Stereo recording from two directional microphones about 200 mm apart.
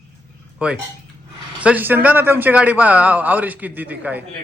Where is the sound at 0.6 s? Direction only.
5° right (ahead or behind).